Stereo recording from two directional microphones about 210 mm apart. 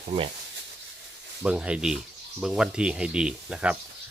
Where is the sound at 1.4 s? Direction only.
5° right (ahead or behind).